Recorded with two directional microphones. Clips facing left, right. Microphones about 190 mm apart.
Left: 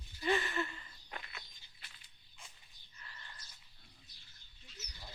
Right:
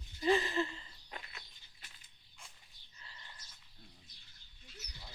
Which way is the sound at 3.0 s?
20° right (ahead or behind).